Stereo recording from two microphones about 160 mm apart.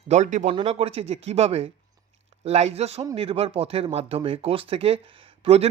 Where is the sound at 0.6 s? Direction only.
40° right (ahead or behind).